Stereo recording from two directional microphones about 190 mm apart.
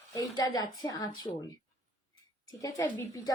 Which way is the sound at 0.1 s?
20° left (ahead or behind).